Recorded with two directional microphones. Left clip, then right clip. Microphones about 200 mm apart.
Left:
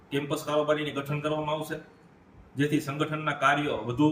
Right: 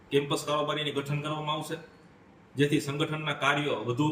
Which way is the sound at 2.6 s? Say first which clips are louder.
Right 1 dB; centre (ahead or behind).